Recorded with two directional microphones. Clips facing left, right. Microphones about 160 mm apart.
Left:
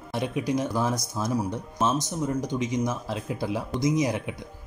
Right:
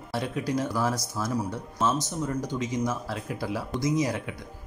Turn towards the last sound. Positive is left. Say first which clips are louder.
# left 2 dB
turn(degrees=15)  # may be behind; listen again after turning